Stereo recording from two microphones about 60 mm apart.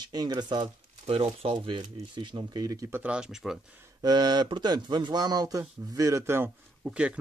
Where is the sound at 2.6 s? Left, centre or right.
Right.